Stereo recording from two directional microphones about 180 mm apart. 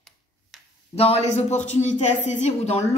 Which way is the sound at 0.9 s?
35° left (ahead or behind).